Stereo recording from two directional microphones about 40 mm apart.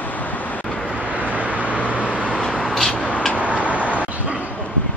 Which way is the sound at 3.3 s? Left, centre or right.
Right.